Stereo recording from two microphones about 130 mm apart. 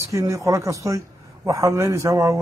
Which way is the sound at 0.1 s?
25° right (ahead or behind).